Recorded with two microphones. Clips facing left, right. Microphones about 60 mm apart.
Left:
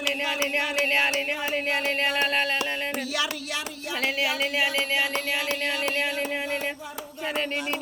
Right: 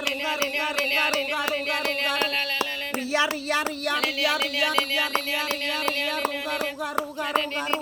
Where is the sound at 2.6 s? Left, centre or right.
Right.